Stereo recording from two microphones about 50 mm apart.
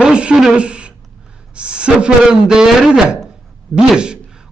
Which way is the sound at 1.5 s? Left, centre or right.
Centre.